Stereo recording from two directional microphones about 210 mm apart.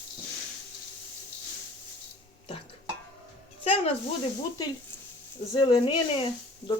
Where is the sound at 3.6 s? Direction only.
30° left (ahead or behind).